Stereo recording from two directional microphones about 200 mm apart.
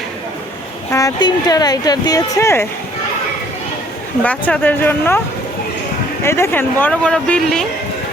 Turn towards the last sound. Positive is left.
turn(degrees=5)  # may be behind; listen again after turning